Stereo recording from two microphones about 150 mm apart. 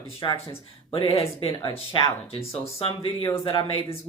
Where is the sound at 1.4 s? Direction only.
35° left (ahead or behind).